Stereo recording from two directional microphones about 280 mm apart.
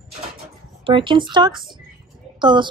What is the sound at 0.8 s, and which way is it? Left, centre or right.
Speech, centre.